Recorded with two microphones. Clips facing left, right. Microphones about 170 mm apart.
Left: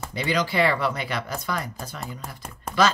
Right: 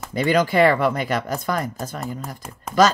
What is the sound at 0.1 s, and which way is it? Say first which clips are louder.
Speech: right 7 dB; 50° right (ahead or behind).